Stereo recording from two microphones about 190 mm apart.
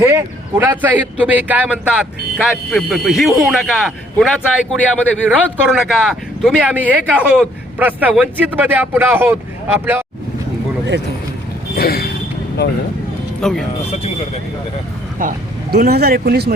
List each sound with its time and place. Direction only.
0.1 s speech: 10° right (ahead or behind)
11.8 s speech: 55° left (ahead or behind)
13.4 s speech: centre (ahead or behind)
15.2 s speech: 45° right (ahead or behind)